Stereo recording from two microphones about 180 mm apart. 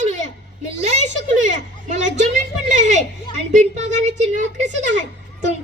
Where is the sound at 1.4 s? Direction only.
40° right (ahead or behind).